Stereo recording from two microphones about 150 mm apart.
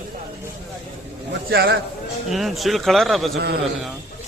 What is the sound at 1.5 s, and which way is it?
Speech, 90° right.